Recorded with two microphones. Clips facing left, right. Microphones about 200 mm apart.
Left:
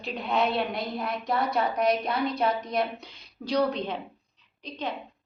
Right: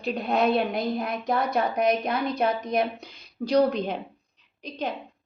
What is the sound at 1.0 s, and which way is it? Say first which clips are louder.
A woman's voice: right 2 dB; 50° right (ahead or behind).